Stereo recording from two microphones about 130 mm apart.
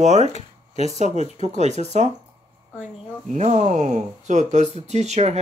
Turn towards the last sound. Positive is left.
turn(degrees=-55)  # may be behind; listen again after turning